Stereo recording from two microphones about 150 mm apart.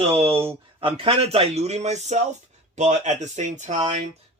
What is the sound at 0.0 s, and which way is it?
Speech, 40° right (ahead or behind).